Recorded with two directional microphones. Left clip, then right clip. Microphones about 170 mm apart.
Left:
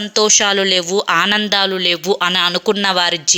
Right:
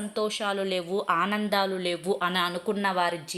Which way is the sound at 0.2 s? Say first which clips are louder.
Left 15 dB; 30° left (ahead or behind).